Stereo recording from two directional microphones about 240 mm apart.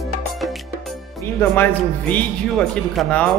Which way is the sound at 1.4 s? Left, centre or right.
Centre.